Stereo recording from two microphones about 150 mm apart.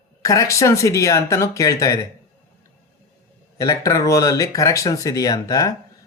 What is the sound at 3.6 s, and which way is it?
Speech, 20° left (ahead or behind).